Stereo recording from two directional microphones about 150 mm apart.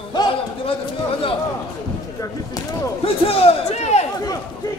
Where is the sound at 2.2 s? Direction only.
25° left (ahead or behind).